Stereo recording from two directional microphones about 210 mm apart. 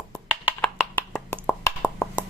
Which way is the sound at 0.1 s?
5° right (ahead or behind).